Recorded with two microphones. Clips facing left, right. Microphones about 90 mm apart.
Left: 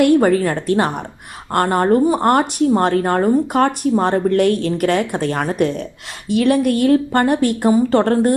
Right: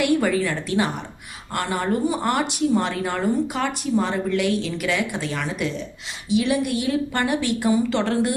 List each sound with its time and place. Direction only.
0.0 s speech: 45° left (ahead or behind)